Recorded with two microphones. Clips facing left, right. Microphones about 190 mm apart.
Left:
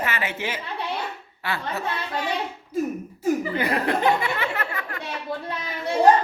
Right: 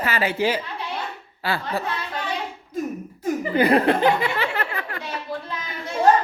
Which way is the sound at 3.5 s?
30° right (ahead or behind).